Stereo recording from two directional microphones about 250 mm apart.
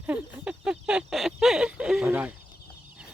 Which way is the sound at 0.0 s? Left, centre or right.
Centre.